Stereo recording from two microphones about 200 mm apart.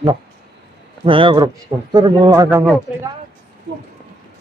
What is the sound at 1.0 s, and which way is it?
Speech, 25° right (ahead or behind).